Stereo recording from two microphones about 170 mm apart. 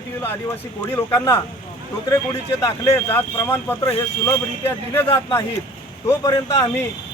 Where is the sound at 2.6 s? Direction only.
15° left (ahead or behind).